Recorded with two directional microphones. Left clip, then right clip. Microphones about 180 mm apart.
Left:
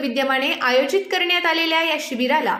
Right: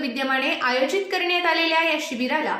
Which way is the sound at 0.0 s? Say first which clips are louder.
Left 3 dB; 25° left (ahead or behind).